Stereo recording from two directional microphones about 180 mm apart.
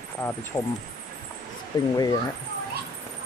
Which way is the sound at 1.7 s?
25° left (ahead or behind).